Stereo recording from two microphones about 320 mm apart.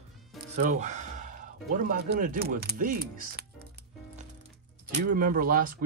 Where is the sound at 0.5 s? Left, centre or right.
Right.